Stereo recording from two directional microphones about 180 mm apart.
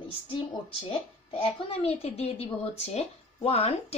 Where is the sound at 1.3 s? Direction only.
30° left (ahead or behind).